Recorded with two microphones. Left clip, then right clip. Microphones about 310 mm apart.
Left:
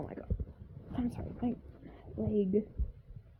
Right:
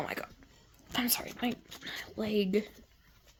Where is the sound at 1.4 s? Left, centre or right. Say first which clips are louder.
Right 3 dB; right.